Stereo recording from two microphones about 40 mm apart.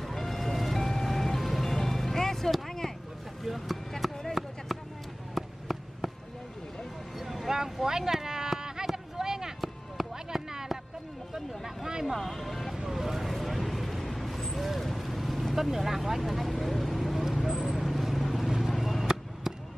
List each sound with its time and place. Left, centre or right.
0.0 s music: centre
3.4 s vehicle: centre
4.0 s a sound: centre
4.7 s basketball bounce: centre
5.3 s a sound: centre
7.2 s a sound: centre
12.3 s music: centre
12.7 s vehicle: centre
18.5 s vehicle: centre